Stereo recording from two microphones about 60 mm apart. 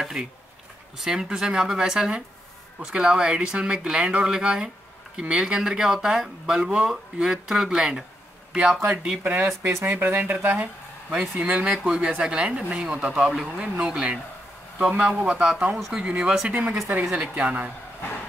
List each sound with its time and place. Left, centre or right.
0.0 s a sound: centre
0.9 s speech: centre
9.2 s speech: right
9.6 s speech: right
9.9 s speech: right; by 16.1 s centre
16.1 s speech: centre